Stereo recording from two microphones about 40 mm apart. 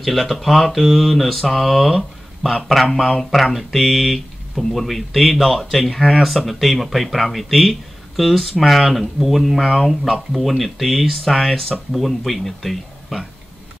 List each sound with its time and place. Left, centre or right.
0.0 s speech: centre